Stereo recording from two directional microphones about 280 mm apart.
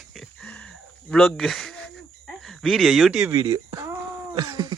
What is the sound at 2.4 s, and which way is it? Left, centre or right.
Speech, centre.